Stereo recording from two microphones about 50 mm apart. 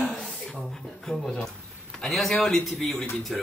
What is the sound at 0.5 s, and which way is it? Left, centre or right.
A man's voice, centre.